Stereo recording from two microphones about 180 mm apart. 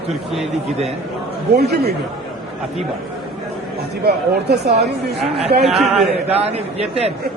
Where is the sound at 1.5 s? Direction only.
60° right (ahead or behind).